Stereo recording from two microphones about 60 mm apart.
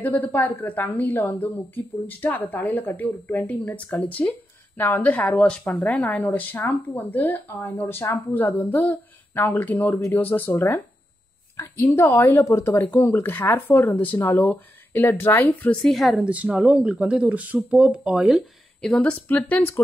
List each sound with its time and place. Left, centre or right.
0.0 s a woman's voice: left
11.8 s a woman's voice: left
12.1 s a woman's voice: left
12.4 s speech: left
12.9 s a woman's voice: left
15.8 s a woman's voice: centre
16.2 s speech: right
17.7 s speech: centre
18.8 s speech: centre
19.2 s speech: left